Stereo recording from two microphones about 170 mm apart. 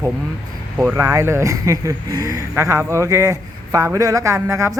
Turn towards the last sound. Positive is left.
turn(degrees=-20)  # may be behind; listen again after turning